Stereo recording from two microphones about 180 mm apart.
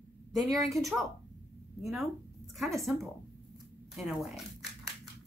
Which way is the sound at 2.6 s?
Centre (ahead or behind).